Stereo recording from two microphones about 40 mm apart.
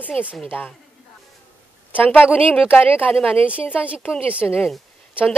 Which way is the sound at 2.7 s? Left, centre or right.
Left.